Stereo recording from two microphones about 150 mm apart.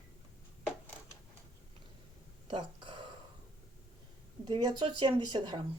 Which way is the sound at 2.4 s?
35° right (ahead or behind).